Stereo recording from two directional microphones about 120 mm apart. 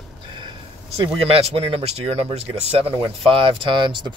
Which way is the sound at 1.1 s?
55° right (ahead or behind).